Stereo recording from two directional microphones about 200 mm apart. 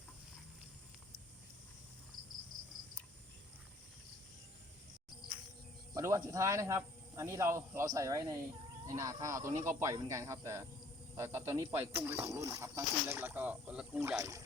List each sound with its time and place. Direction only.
5.9 s speech: 15° right (ahead or behind)